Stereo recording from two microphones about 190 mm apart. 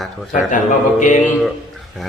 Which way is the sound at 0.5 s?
40° left (ahead or behind).